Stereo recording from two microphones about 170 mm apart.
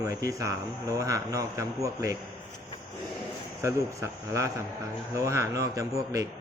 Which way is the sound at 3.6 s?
15° right (ahead or behind).